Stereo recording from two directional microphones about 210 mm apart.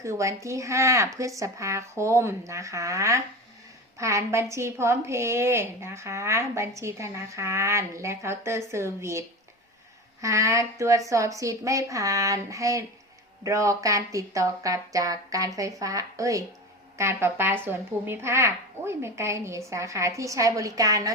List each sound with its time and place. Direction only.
0.0 s a woman's voice: 15° right (ahead or behind)